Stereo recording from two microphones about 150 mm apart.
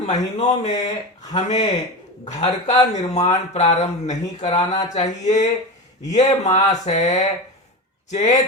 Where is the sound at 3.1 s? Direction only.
50° left (ahead or behind).